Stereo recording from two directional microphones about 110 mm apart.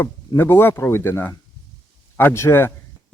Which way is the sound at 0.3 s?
20° left (ahead or behind).